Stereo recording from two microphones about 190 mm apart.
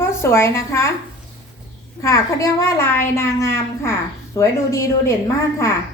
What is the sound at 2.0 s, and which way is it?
A woman's voice, 15° left (ahead or behind).